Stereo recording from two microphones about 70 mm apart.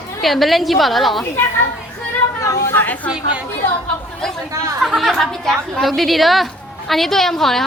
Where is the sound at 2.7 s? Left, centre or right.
Left.